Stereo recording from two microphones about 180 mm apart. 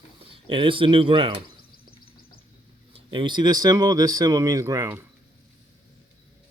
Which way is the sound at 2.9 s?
25° right (ahead or behind).